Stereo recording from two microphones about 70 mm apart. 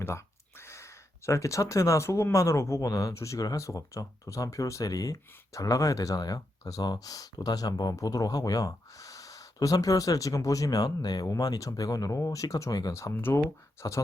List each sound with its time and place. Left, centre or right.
0.6 s speech: left
13.1 s speech: left
13.8 s speech: left